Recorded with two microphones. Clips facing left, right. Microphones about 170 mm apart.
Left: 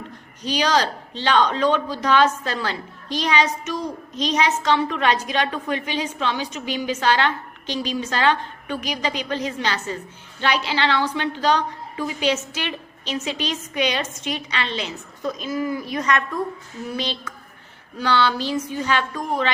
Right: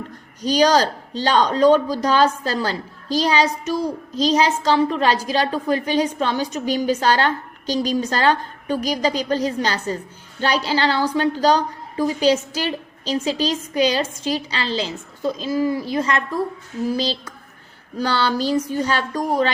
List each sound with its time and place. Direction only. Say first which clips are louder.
0.4 s a woman's voice: right 5 dB; 40° right (ahead or behind)